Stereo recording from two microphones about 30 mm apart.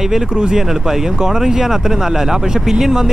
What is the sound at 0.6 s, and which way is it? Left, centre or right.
Speech, centre.